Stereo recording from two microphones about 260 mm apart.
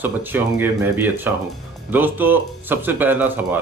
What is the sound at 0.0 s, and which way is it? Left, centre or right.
Speech, centre.